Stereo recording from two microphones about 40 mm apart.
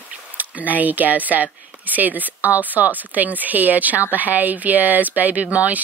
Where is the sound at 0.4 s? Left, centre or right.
Right.